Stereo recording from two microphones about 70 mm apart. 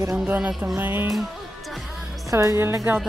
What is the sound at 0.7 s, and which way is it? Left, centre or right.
Speech, right.